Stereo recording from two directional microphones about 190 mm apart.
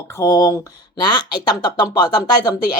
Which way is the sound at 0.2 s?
20° left (ahead or behind).